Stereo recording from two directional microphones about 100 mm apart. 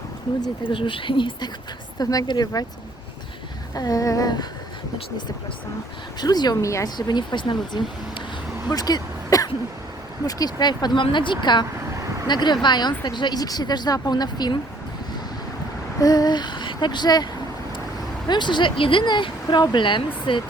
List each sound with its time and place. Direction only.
0.7 s speech: 60° left (ahead or behind)
2.0 s speech: 40° left (ahead or behind)
3.8 s speech: 35° left (ahead or behind)
6.1 s speech: 45° left (ahead or behind)
6.9 s speech: 45° left (ahead or behind)
8.6 s throat clearing: 40° left (ahead or behind)
10.2 s speech: 40° left (ahead or behind)
16.0 s a sound: 40° left (ahead or behind)
18.3 s speech: 50° left (ahead or behind)